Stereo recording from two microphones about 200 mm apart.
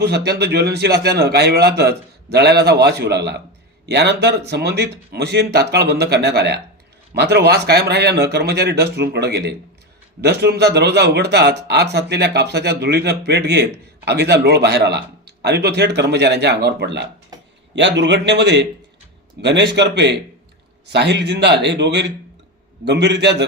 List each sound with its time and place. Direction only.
0.0 s speech: 55° right (ahead or behind)